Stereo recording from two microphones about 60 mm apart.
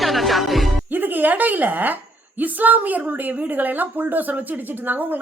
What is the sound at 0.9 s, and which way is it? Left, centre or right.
A woman's voice, right.